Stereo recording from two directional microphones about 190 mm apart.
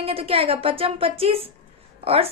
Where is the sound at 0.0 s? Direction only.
30° right (ahead or behind).